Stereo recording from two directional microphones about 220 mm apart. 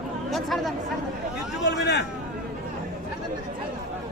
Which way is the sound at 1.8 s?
50° left (ahead or behind).